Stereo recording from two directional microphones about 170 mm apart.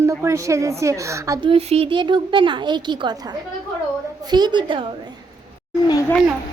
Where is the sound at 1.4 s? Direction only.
35° right (ahead or behind).